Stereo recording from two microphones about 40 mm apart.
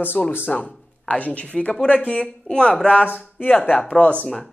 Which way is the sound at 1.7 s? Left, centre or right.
Centre.